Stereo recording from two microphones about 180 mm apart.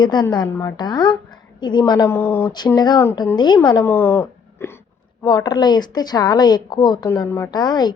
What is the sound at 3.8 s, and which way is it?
Speech, 10° left (ahead or behind).